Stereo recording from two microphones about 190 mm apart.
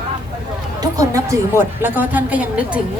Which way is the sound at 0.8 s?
15° right (ahead or behind).